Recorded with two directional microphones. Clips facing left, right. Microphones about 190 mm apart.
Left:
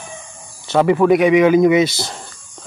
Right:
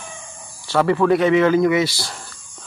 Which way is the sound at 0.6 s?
20° left (ahead or behind).